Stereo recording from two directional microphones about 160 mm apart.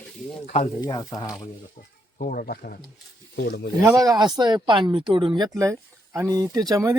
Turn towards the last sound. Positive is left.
turn(degrees=-20)  # may be behind; listen again after turning